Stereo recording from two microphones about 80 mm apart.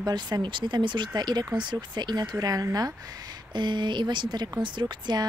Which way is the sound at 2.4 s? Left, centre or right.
Right.